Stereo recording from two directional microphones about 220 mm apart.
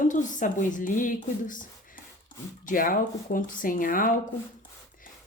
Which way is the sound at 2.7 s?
40° left (ahead or behind).